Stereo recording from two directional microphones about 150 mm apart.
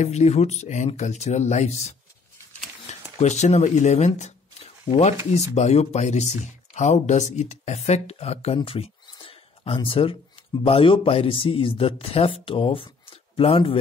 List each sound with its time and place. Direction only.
0.0 s speech: 50° left (ahead or behind)
3.2 s speech: 50° left (ahead or behind)
8.5 s a sound: 40° left (ahead or behind)
9.8 s speech: 35° left (ahead or behind)